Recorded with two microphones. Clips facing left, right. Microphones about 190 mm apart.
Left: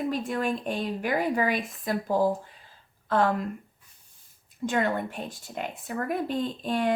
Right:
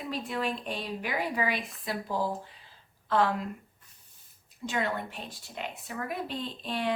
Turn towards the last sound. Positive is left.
turn(degrees=45)  # may be behind; listen again after turning